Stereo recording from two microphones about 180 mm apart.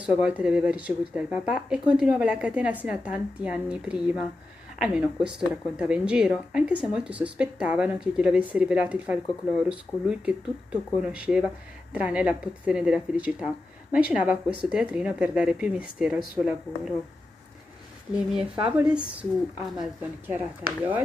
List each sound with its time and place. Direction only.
0.0 s a woman's voice: 5° right (ahead or behind)
18.3 s a woman's voice: 5° right (ahead or behind)